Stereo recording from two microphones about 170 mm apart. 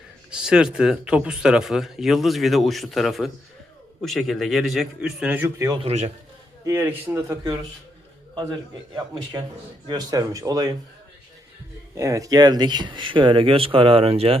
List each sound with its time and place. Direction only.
0.3 s speech: 5° right (ahead or behind)
5.8 s a man's voice: 40° right (ahead or behind)
6.7 s a man's voice: 10° right (ahead or behind)
9.8 s speech: 25° right (ahead or behind)
11.9 s speech: 20° right (ahead or behind); by 14.3 s 35° right (ahead or behind)